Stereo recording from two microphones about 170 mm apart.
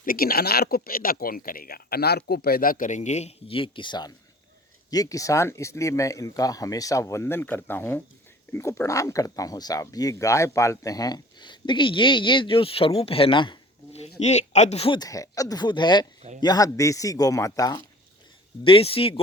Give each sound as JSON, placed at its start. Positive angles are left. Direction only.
{"t": 0.0, "sound": "speech", "side_deg": 60}
{"t": 14.9, "sound": "speech", "side_deg": 20}
{"t": 18.6, "sound": "speech", "side_deg": 35}